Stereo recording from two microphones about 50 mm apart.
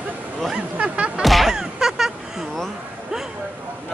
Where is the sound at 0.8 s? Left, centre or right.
Right.